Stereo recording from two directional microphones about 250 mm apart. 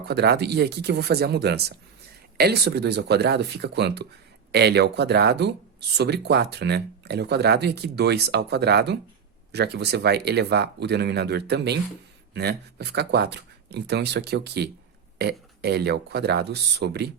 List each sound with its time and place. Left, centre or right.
0.0 s speech: right